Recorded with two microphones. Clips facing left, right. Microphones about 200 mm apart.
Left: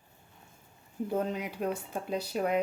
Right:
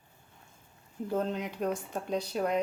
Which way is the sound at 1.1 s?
10° left (ahead or behind).